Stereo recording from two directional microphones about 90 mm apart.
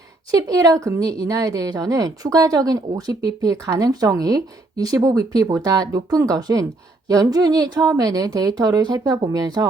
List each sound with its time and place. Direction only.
0.3 s a woman's voice: 40° right (ahead or behind)